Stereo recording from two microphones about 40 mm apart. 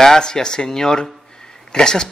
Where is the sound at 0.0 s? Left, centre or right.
Centre.